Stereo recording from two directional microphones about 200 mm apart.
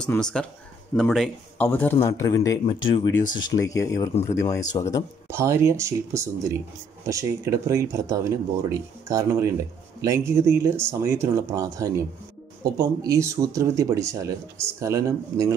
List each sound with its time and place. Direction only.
0.0 s speech: 5° left (ahead or behind)
5.3 s speech: 15° right (ahead or behind)